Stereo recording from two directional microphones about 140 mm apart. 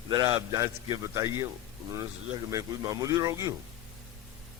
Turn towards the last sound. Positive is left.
turn(degrees=-25)  # may be behind; listen again after turning